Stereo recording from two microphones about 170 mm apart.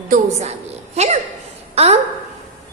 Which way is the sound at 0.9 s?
40° right (ahead or behind).